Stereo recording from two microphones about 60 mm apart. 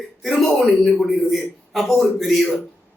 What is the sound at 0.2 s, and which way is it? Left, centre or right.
A man's voice, centre.